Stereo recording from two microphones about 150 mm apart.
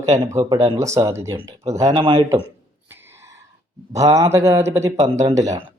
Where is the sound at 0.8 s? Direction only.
20° right (ahead or behind).